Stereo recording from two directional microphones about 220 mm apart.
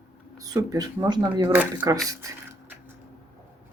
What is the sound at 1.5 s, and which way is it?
Speech, 10° right (ahead or behind).